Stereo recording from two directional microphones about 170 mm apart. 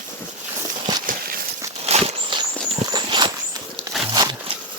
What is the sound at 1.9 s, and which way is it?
Walk, 35° right (ahead or behind).